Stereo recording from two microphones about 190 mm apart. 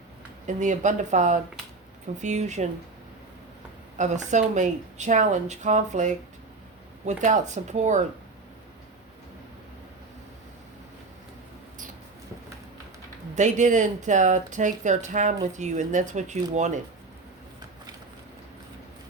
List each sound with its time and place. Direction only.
0.4 s speech: 40° right (ahead or behind)
3.9 s speech: 40° right (ahead or behind)
13.3 s speech: 40° right (ahead or behind)